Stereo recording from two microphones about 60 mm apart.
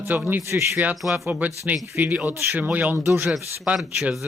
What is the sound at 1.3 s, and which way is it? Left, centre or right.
Speech, right.